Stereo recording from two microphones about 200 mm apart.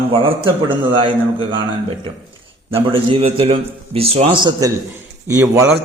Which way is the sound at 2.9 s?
25° right (ahead or behind).